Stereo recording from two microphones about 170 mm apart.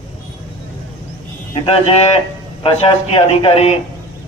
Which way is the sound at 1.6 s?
35° left (ahead or behind).